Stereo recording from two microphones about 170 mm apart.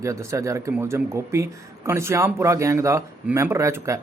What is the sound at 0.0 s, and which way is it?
Speech, 15° right (ahead or behind).